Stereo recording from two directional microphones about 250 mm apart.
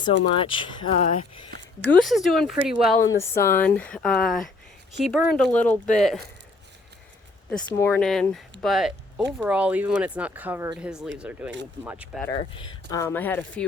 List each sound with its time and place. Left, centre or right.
0.3 s speech: centre
1.8 s speech: centre
3.3 s speech: centre
7.5 s speech: centre
12.3 s speech: centre